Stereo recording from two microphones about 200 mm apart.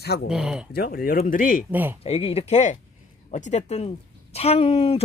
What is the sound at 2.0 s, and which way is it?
Speech, 30° left (ahead or behind).